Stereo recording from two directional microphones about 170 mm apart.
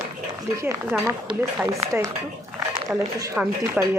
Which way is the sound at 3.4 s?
5° right (ahead or behind).